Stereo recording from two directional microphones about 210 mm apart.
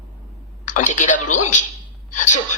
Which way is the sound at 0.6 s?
35° left (ahead or behind).